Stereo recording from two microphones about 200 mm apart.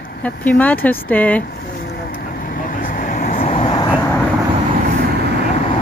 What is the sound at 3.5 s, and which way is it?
Vehicle, 25° left (ahead or behind).